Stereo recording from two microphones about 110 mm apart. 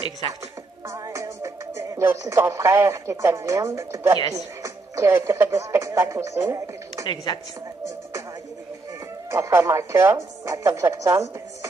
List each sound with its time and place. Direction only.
0.8 s music: 30° right (ahead or behind)
4.6 s speech: 25° right (ahead or behind)
7.3 s a woman's voice: 45° left (ahead or behind)
9.3 s speech: 25° right (ahead or behind)